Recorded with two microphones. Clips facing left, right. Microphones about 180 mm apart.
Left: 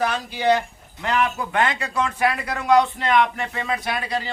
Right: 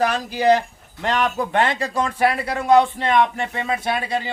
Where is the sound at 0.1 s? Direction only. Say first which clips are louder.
Right 3 dB; 40° right (ahead or behind).